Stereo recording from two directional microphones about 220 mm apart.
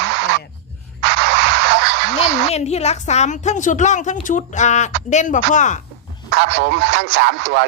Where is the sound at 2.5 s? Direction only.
30° left (ahead or behind).